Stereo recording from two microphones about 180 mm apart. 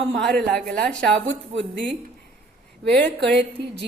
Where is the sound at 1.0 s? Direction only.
80° right.